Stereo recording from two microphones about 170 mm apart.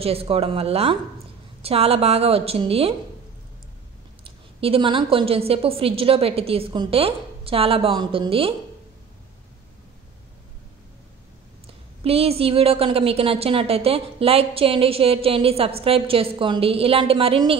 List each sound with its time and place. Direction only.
0.0 s a woman's voice: 35° right (ahead or behind)
4.2 s a woman's voice: 35° right (ahead or behind)
11.6 s a woman's voice: 35° right (ahead or behind)